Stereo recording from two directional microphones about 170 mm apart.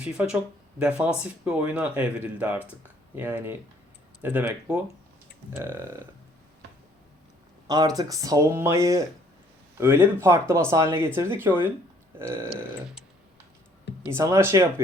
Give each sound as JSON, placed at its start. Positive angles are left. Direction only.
{"t": 0.0, "sound": "speech", "side_deg": -5}
{"t": 7.7, "sound": "speech", "side_deg": -25}
{"t": 14.1, "sound": "speech", "side_deg": -15}